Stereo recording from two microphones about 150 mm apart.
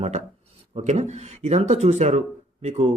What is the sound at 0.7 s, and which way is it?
Speech, 50° right (ahead or behind).